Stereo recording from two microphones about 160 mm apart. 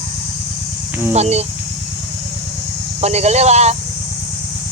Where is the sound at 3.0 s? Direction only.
40° right (ahead or behind).